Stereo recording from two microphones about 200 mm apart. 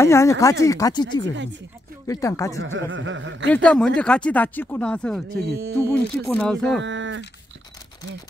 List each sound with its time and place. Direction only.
0.0 s speech: 15° left (ahead or behind)
1.3 s speech: 65° right (ahead or behind)
2.0 s speech: 15° left (ahead or behind)
2.6 s speech: 70° right (ahead or behind)
3.5 s speech: 5° left (ahead or behind)
5.6 s speech: 15° right (ahead or behind)
6.2 s speech: 5° left (ahead or behind)
6.8 s speech: 65° right (ahead or behind)